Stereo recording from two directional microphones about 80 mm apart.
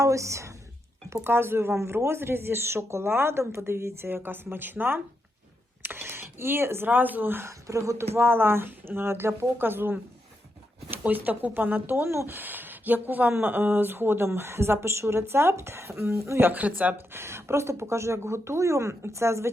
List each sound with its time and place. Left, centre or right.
0.0 s speech: right
16.5 s speech: centre
17.2 s speech: right